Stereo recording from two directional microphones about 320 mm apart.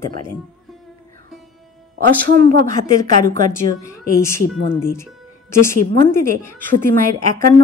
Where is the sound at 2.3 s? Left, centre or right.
Right.